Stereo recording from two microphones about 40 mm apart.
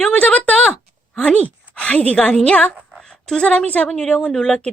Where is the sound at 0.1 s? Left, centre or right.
Left.